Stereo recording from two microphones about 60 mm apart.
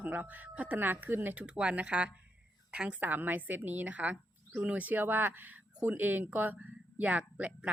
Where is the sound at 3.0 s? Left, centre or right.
Right.